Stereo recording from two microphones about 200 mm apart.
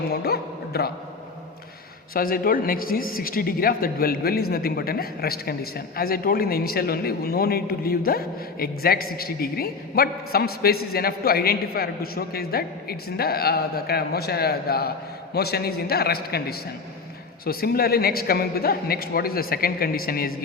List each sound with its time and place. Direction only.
0.1 s a man's voice: 50° left (ahead or behind)
2.1 s a man's voice: 45° left (ahead or behind)